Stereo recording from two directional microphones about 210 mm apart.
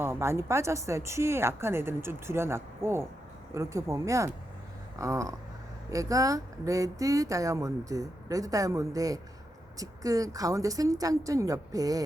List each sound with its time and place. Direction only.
0.0 s speech: 10° right (ahead or behind)